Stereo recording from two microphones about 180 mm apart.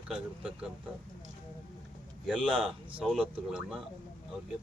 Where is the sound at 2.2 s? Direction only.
Centre (ahead or behind).